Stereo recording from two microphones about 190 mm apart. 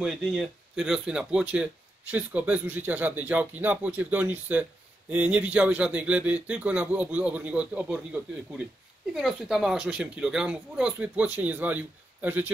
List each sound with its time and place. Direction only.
0.0 s speech: centre (ahead or behind)